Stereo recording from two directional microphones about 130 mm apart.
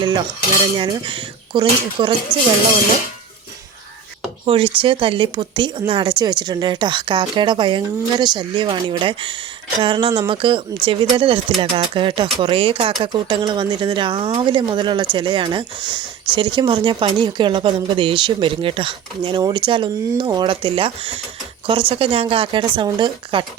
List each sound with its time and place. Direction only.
0.8 s speech: 40° right (ahead or behind)
4.4 s speech: 45° right (ahead or behind)